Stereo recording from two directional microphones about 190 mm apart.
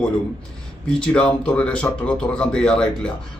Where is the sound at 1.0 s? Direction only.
5° left (ahead or behind).